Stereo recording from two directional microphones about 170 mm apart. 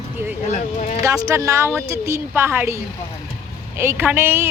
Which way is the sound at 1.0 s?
20° right (ahead or behind).